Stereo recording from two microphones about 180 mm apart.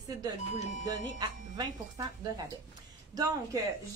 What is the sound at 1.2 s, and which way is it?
A woman's voice, 25° right (ahead or behind).